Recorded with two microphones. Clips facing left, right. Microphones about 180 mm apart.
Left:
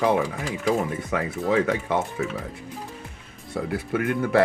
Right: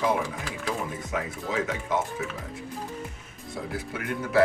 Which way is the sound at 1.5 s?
65° left (ahead or behind).